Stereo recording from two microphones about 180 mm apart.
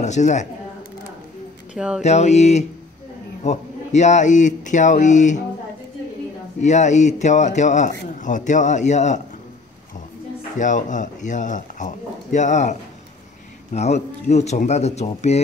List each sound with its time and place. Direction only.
0.0 s speech: 40° left (ahead or behind)
1.8 s speech: 5° right (ahead or behind)
2.0 s speech: 40° left (ahead or behind)
6.6 s speech: 40° left (ahead or behind)
10.6 s speech: 45° left (ahead or behind)
13.7 s speech: 40° left (ahead or behind)